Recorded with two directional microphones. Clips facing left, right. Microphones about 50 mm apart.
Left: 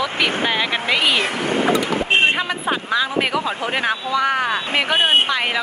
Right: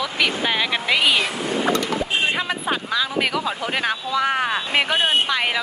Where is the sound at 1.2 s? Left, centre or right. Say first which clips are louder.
Left 3 dB; left.